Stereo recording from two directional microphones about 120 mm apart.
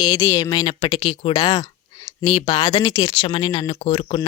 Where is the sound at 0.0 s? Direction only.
30° left (ahead or behind).